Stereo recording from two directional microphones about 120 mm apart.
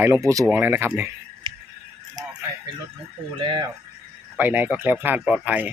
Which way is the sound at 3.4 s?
40° right (ahead or behind).